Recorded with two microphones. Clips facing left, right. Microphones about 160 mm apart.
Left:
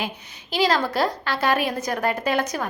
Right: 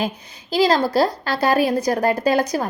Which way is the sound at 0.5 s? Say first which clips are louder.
Right 5 dB; 35° right (ahead or behind).